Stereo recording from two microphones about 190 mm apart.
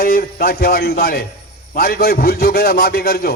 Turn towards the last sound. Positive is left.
turn(degrees=55)  # may be behind; listen again after turning